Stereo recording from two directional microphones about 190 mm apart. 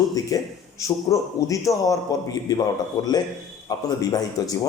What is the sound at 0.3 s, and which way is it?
A man's voice, 20° left (ahead or behind).